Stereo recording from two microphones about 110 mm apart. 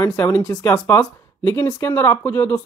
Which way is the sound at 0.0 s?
20° left (ahead or behind).